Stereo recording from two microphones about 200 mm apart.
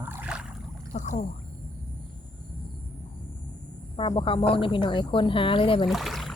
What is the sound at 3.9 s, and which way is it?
A woman's voice, 25° left (ahead or behind).